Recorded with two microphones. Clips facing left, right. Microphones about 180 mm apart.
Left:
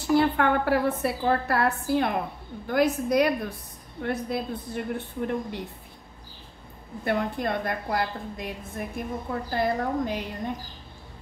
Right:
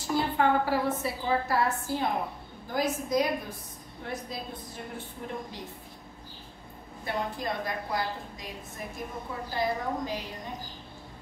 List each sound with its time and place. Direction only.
0.1 s a woman's voice: 65° left (ahead or behind)
7.1 s a woman's voice: 60° left (ahead or behind)